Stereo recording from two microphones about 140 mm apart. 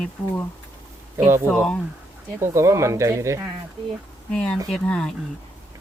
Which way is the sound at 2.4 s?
20° right (ahead or behind).